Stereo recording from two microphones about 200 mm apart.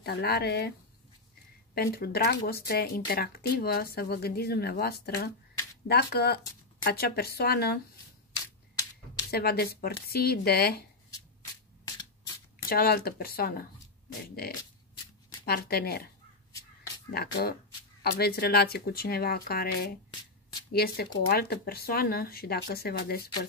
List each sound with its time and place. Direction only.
0.0 s speech: 55° left (ahead or behind)
1.8 s speech: 50° left (ahead or behind)
9.3 s speech: 50° left (ahead or behind)
12.6 s speech: 50° left (ahead or behind)
15.4 s speech: 50° left (ahead or behind)
17.1 s speech: 50° left (ahead or behind)